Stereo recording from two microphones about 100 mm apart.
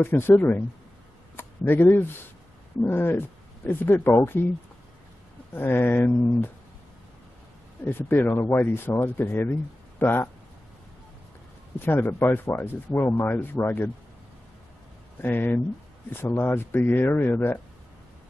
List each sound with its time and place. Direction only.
0.0 s speech: 20° left (ahead or behind)
5.5 s speech: 20° left (ahead or behind)
7.8 s speech: 20° left (ahead or behind)
11.8 s speech: 20° left (ahead or behind)
15.2 s speech: 20° left (ahead or behind)